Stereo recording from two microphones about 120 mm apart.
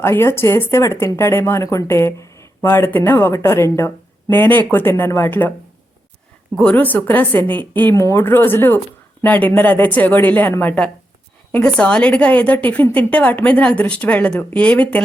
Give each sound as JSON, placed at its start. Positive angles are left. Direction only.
{"t": 0.0, "sound": "speech", "side_deg": 20}
{"t": 6.6, "sound": "a woman's voice", "side_deg": 10}